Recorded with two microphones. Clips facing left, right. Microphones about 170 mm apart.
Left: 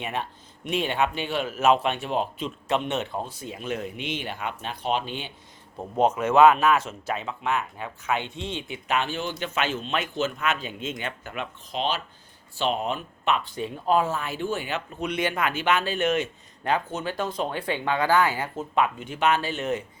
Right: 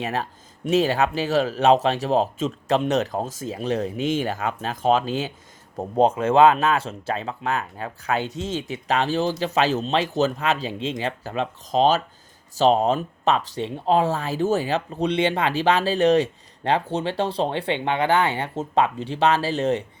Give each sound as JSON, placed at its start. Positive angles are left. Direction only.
{"t": 0.0, "sound": "speech", "side_deg": -35}